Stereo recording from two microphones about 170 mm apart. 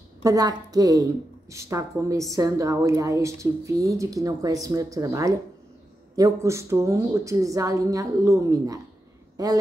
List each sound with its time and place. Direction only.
0.2 s a woman's voice: 20° right (ahead or behind)